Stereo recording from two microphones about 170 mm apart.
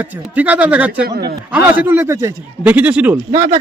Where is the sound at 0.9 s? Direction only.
65° right (ahead or behind).